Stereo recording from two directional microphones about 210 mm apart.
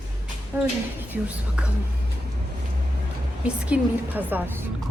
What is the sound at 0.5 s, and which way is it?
A woman's voice, 10° right (ahead or behind).